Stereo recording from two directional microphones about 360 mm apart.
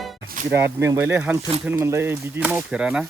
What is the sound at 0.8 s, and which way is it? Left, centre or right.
Speech, centre.